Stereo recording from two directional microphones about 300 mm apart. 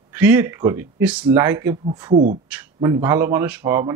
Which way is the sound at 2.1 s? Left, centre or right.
Right.